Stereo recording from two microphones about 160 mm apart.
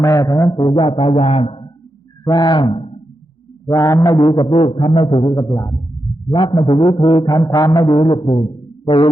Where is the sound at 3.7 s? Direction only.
20° left (ahead or behind).